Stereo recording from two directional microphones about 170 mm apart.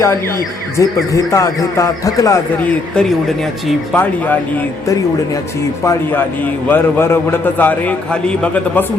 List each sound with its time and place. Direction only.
0.8 s speech: 20° left (ahead or behind)
2.6 s a man's voice: 5° left (ahead or behind)